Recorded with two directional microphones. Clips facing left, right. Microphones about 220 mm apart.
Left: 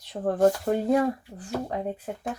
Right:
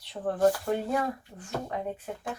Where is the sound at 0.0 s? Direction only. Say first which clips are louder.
Left 3 dB; 45° left (ahead or behind).